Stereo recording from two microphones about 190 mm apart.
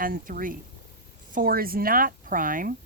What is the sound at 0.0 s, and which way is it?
Speech, 45° right (ahead or behind).